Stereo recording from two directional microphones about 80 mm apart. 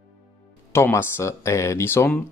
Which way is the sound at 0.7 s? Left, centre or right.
Left.